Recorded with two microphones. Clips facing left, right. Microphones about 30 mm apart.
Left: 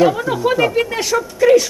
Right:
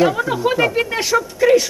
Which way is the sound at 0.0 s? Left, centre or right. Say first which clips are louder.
Left 2 dB; centre.